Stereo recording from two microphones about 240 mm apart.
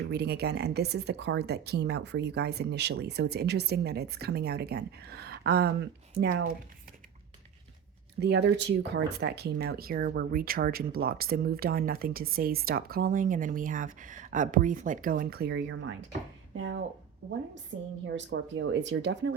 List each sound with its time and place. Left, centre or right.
0.1 s speech: right
8.2 s speech: right